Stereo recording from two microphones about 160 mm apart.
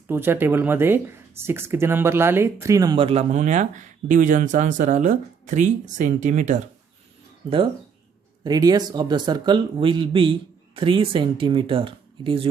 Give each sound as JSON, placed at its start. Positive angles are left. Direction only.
{"t": 0.1, "sound": "speech", "side_deg": -15}
{"t": 3.0, "sound": "speech", "side_deg": -40}
{"t": 7.4, "sound": "speech", "side_deg": -20}